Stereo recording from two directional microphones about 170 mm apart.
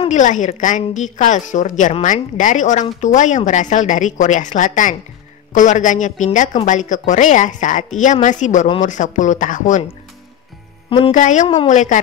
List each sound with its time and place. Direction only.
0.1 s a woman's voice: 45° left (ahead or behind)
11.1 s a woman's voice: 45° left (ahead or behind)
11.4 s a woman's voice: 25° left (ahead or behind)
11.7 s a woman's voice: 45° left (ahead or behind)